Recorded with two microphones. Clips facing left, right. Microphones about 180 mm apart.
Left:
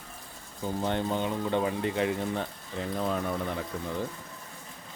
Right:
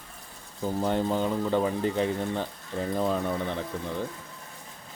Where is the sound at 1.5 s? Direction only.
35° right (ahead or behind).